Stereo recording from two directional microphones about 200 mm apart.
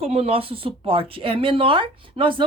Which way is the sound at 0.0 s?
30° right (ahead or behind).